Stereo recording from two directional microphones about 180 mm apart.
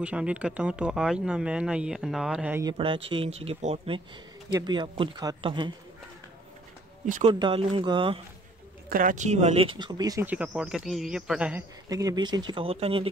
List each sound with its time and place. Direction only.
0.0 s speech: 5° right (ahead or behind)
2.6 s speech: 30° right (ahead or behind)
7.2 s speech: 30° right (ahead or behind)
8.8 s speech: 50° right (ahead or behind); by 10.2 s 20° right (ahead or behind)
10.2 s speech: 5° right (ahead or behind)
11.9 s speech: 20° right (ahead or behind)